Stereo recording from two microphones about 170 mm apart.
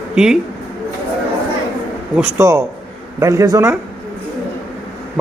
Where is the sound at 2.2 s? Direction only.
15° right (ahead or behind).